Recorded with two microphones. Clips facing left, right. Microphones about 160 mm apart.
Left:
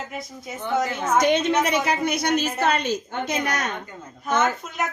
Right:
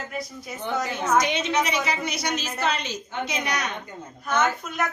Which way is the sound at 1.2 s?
55° left (ahead or behind).